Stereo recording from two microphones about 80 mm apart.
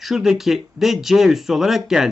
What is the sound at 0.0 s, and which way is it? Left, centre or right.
Speech, centre.